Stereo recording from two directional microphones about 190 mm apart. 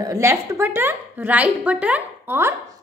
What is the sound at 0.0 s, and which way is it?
A woman's voice, 15° right (ahead or behind).